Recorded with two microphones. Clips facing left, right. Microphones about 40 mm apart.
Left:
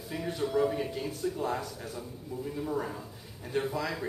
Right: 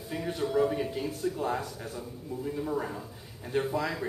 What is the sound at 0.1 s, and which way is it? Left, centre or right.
Speech, centre.